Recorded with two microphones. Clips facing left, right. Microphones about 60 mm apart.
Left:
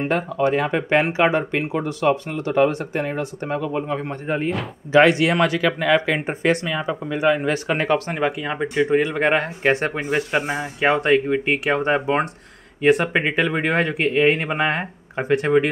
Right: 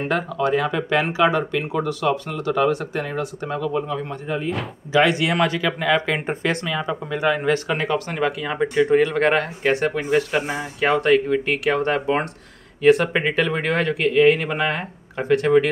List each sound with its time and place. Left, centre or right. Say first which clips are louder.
0.1 s speech: even; left
5.2 s speech: left 2 dB; left
6.4 s speech: left 3 dB; left
9.4 s speech: even; left
9.9 s speech: right 1 dB; centre
10.9 s speech: even; left